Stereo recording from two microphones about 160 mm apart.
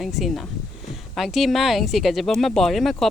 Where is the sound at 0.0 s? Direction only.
Centre (ahead or behind).